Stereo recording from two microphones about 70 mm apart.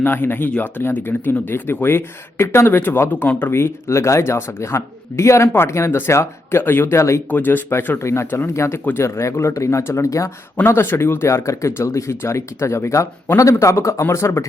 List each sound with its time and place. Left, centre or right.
0.0 s speech: left
7.3 s speech: left
10.7 s speech: left